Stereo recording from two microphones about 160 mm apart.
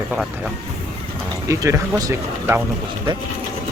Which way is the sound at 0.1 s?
Centre (ahead or behind).